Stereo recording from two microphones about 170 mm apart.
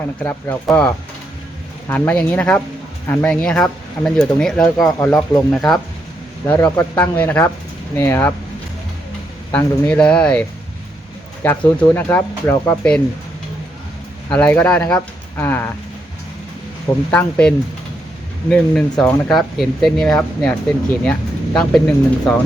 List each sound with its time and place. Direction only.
0.2 s speech: 10° left (ahead or behind)
4.8 s speech: 15° left (ahead or behind)
5.5 s speech: centre (ahead or behind)
9.5 s speech: 10° left (ahead or behind)
11.4 s speech: 10° left (ahead or behind)
14.3 s speech: 10° left (ahead or behind)
17.1 s speech: 10° left (ahead or behind)
18.5 s speech: 5° left (ahead or behind)